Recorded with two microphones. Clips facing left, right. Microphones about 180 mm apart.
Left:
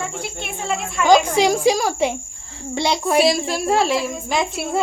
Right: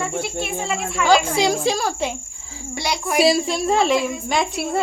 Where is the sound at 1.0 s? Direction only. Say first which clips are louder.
Left 3 dB; 15° left (ahead or behind).